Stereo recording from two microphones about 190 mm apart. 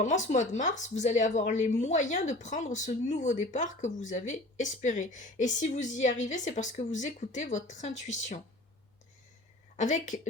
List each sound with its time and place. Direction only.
0.0 s speech: 40° left (ahead or behind)
9.7 s speech: 40° left (ahead or behind)